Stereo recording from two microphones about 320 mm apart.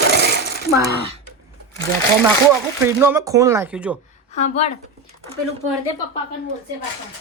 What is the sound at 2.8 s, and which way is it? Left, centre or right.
A man's voice, centre.